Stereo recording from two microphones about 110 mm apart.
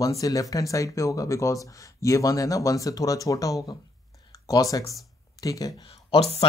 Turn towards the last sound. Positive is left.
turn(degrees=60)  # may be behind; listen again after turning